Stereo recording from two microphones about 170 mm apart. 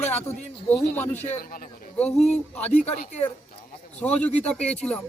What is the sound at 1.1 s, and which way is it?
Speech, 40° left (ahead or behind).